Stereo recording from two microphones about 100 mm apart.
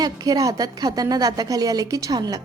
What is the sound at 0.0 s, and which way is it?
A woman's voice, 40° right (ahead or behind).